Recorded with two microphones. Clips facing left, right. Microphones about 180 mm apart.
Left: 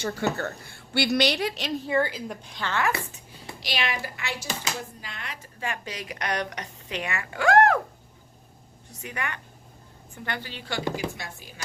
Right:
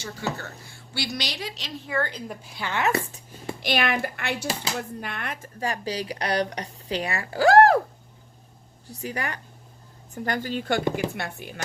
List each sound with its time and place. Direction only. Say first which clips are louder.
0.0 s a woman's voice: left 5 dB; 60° left (ahead or behind)
2.0 s a woman's voice: right 1 dB; 5° left (ahead or behind); by 2.8 s 10° right (ahead or behind)
3.1 s a child's voice: right 7 dB; 50° right (ahead or behind); by 7.8 s 35° right (ahead or behind)
8.9 s a woman's voice: right 3 dB; 35° right (ahead or behind); by 10.8 s 50° right (ahead or behind)
11.1 s speech: right 7 dB; 60° right (ahead or behind)